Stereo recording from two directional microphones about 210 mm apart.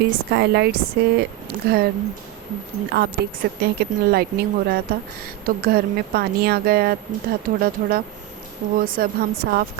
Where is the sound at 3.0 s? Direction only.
50° right (ahead or behind).